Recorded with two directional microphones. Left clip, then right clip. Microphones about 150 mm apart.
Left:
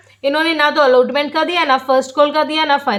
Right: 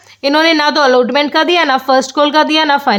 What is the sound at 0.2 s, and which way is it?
A woman's voice, 80° right.